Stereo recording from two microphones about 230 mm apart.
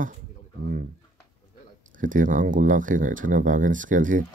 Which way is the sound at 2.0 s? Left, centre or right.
Right.